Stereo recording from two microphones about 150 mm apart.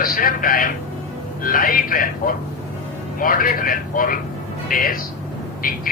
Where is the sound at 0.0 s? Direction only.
70° left (ahead or behind).